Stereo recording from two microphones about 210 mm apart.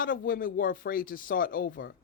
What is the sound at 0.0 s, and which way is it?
A woman's voice, 40° left (ahead or behind).